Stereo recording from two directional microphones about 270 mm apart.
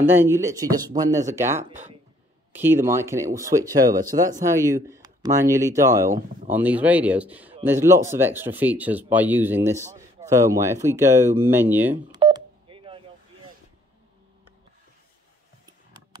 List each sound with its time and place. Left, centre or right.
0.0 s speech: centre
12.2 s telephone dialing: centre